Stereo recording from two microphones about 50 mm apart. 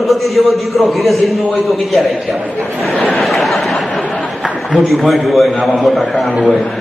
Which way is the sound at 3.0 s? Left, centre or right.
Centre.